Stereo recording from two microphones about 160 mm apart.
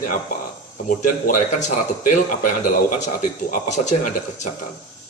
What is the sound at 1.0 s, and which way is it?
Speech, 50° left (ahead or behind).